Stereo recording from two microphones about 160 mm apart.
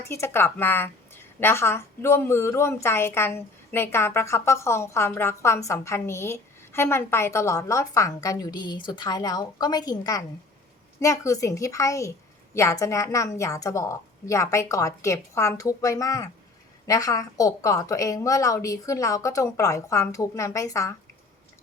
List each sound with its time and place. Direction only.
0.0 s a woman's voice: 15° left (ahead or behind)